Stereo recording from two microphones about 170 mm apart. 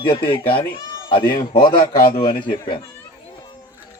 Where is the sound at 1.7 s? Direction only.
60° left (ahead or behind).